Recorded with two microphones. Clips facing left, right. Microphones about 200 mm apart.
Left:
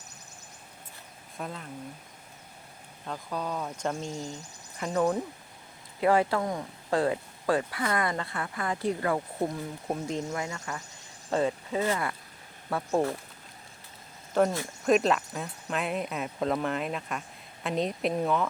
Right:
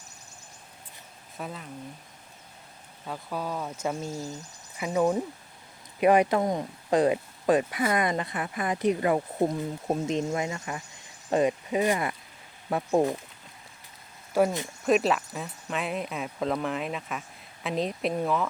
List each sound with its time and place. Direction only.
1.4 s speech: centre (ahead or behind)
3.1 s speech: 5° right (ahead or behind)
14.4 s speech: 10° right (ahead or behind)